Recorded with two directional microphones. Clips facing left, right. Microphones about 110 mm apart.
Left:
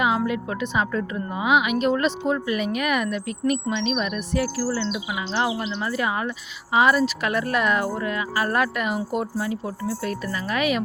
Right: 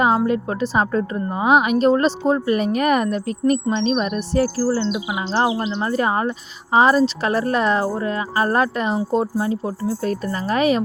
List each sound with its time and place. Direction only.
0.3 s speech: 35° right (ahead or behind)